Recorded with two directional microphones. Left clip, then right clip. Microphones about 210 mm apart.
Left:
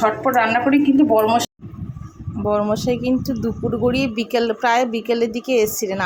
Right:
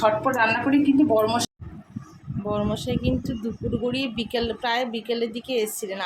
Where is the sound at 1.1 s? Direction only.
20° left (ahead or behind).